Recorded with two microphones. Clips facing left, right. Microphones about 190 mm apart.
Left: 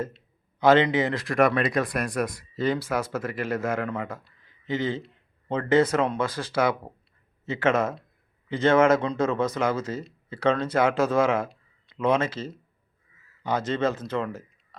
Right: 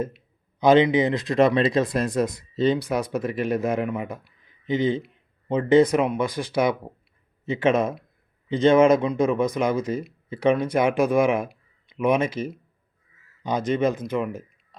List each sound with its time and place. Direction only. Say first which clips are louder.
0.6 s speech: right 3 dB; 15° right (ahead or behind)